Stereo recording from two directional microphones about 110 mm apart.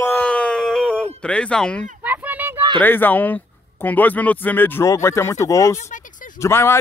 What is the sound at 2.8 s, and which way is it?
Speech, 15° left (ahead or behind).